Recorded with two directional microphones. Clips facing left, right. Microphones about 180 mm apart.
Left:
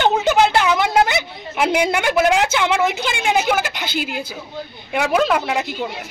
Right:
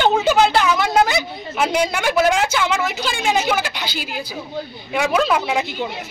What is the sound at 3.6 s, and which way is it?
Speech, 55° left (ahead or behind).